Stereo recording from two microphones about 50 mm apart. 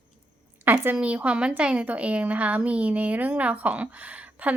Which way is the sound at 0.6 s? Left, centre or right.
Right.